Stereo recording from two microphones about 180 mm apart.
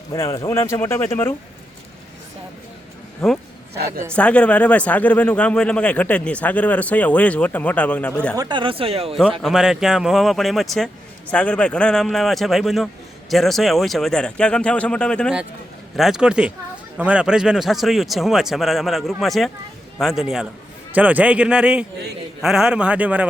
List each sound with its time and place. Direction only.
0.1 s speech: 20° left (ahead or behind)
3.2 s speech: 5° left (ahead or behind)
8.4 s speech: 25° right (ahead or behind)
9.4 s a man's voice: centre (ahead or behind)